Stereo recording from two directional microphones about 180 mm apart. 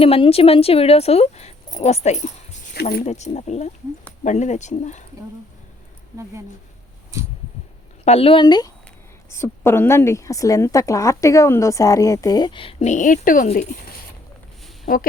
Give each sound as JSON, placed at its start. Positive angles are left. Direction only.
{"t": 0.0, "sound": "speech", "side_deg": 35}
{"t": 2.8, "sound": "speech", "side_deg": 65}
{"t": 3.1, "sound": "speech", "side_deg": 40}
{"t": 8.0, "sound": "a woman's voice", "side_deg": 35}